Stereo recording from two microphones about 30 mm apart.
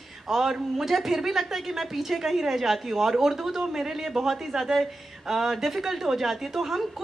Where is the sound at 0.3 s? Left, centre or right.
Centre.